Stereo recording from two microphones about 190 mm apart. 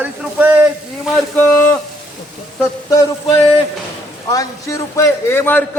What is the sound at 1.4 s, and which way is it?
Speech, 10° left (ahead or behind).